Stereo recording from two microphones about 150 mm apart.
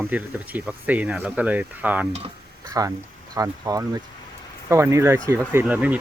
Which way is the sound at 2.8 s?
25° right (ahead or behind).